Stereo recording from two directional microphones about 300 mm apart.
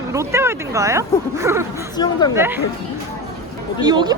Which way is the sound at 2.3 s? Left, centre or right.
Centre.